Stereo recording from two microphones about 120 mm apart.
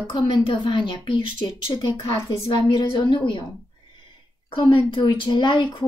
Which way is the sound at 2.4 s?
40° left (ahead or behind).